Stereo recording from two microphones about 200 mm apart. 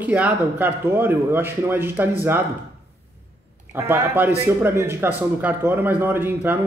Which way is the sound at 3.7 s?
10° right (ahead or behind).